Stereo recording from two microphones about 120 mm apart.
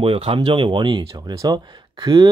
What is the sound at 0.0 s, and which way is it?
Speech, 55° right (ahead or behind).